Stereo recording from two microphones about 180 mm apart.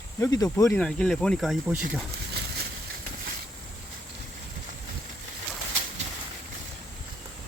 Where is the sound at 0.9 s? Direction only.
5° left (ahead or behind).